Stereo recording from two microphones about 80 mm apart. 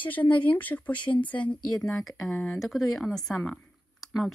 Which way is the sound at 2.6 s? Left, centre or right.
Centre.